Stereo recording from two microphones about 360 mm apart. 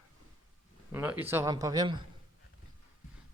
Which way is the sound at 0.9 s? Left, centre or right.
Centre.